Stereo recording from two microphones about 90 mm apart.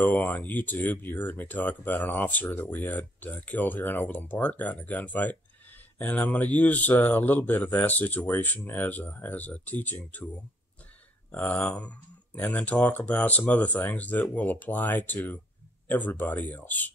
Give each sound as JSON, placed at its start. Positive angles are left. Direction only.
{"t": 0.0, "sound": "speech", "side_deg": 20}
{"t": 11.6, "sound": "speech", "side_deg": 15}